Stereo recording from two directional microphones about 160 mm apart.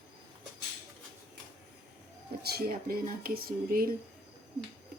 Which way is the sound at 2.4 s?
70° right (ahead or behind).